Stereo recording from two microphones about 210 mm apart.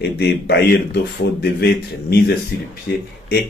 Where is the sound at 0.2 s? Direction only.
50° left (ahead or behind).